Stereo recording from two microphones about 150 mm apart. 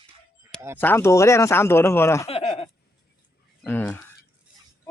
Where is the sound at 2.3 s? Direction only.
40° left (ahead or behind).